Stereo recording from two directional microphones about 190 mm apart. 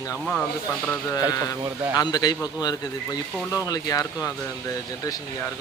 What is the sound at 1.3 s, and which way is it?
A man's voice, 20° left (ahead or behind).